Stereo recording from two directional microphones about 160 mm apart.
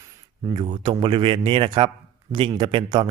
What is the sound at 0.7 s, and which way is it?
Speech, 30° right (ahead or behind).